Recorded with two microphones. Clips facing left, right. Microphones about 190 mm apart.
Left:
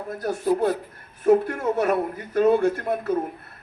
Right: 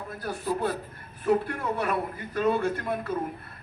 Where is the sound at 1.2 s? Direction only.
45° left (ahead or behind).